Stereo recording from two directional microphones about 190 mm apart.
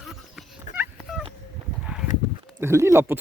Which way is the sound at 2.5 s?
15° right (ahead or behind).